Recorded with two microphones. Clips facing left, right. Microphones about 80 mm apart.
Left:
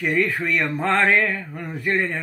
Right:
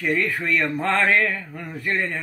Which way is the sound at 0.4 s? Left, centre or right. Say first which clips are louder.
Even; centre.